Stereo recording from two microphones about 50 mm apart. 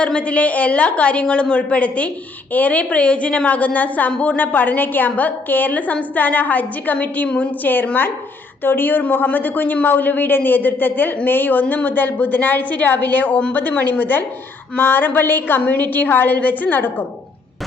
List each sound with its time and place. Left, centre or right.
0.0 s a woman's voice: left
14.8 s a sound: left
15.6 s a woman's voice: left